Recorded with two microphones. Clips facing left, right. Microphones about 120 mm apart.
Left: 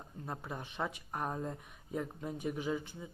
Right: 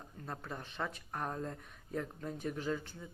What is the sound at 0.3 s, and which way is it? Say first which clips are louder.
Speech: left 1 dB; 15° left (ahead or behind).